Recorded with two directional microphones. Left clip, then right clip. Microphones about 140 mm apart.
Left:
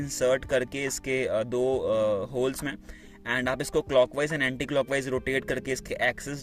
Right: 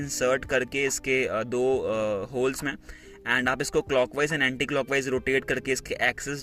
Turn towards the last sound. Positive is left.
turn(degrees=25)  # may be behind; listen again after turning